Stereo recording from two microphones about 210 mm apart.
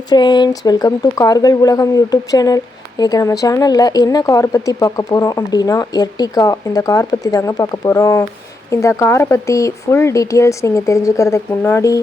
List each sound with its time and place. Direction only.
0.1 s speech: 20° left (ahead or behind)